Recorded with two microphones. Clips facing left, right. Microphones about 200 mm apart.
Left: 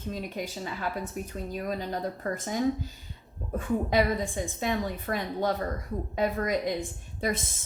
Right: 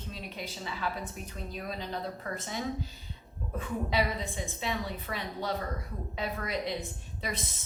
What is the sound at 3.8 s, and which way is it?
A woman's voice, 50° left (ahead or behind).